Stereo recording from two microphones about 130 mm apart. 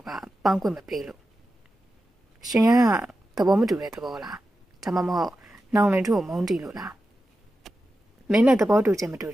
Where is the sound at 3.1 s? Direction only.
5° right (ahead or behind).